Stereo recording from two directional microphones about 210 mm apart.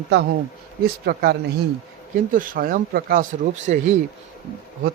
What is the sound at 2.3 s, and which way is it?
Speech, 40° right (ahead or behind).